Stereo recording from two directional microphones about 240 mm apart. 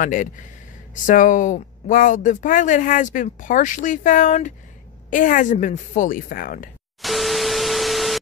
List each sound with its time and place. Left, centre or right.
0.0 s speech: left
7.0 s static: centre